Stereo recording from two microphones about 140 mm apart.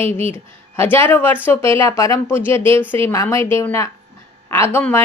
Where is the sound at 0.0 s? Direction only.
15° left (ahead or behind).